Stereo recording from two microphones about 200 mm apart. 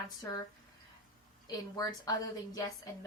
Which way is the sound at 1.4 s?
20° left (ahead or behind).